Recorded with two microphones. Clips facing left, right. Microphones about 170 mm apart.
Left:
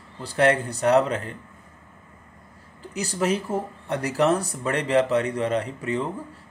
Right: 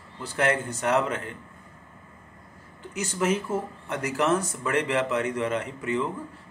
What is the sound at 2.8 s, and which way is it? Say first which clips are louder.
Speech: left 2 dB; 35° left (ahead or behind).